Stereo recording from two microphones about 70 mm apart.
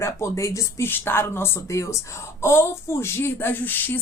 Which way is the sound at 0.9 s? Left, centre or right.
Left.